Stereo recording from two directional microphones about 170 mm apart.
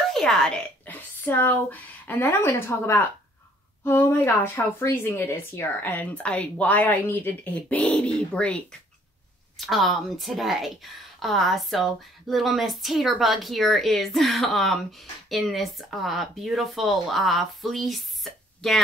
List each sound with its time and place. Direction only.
0.1 s speech: 5° left (ahead or behind)
9.7 s a woman's voice: centre (ahead or behind)